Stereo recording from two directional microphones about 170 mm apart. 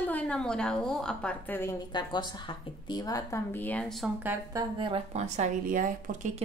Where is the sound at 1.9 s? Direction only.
25° left (ahead or behind); by 4.1 s centre (ahead or behind).